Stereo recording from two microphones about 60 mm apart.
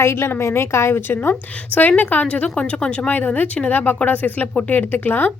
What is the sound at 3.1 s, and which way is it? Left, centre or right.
Speech, left.